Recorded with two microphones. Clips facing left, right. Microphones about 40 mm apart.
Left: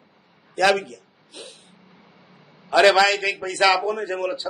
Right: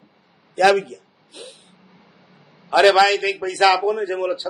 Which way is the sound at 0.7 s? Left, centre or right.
Centre.